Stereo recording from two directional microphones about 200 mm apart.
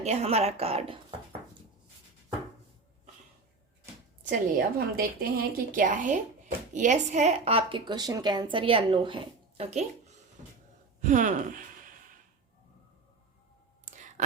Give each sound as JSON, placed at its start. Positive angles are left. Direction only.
{"t": 0.0, "sound": "speech", "side_deg": -30}
{"t": 4.2, "sound": "a woman's voice", "side_deg": -45}
{"t": 11.0, "sound": "speech", "side_deg": -40}
{"t": 13.9, "sound": "clicking", "side_deg": -35}